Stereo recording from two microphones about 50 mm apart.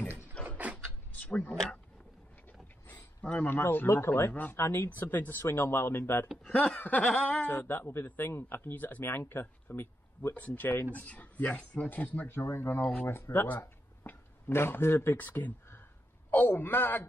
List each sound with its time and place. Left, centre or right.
0.5 s a sound: right
1.3 s a man's voice: left
3.4 s speech: left
4.3 s a man's voice: left
4.6 s speech: left
5.0 s speech: left
6.2 s speech: centre
6.5 s a man's voice: left
7.6 s speech: left
8.7 s a man's voice: left
10.3 s a man's voice: left
12.3 s a man's voice: left